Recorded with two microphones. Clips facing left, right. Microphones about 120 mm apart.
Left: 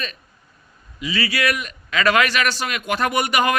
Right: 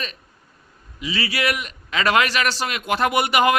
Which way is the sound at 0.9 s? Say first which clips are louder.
Left 2 dB; 25° right (ahead or behind).